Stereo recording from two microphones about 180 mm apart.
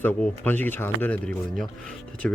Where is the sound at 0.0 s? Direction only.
10° left (ahead or behind).